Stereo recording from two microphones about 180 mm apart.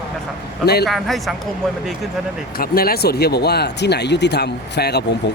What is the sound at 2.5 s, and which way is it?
Speech, 55° left (ahead or behind).